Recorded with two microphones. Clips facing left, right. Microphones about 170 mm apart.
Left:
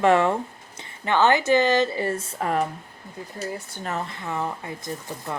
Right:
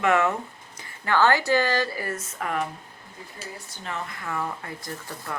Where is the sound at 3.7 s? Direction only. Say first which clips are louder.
Left 1 dB; 45° left (ahead or behind).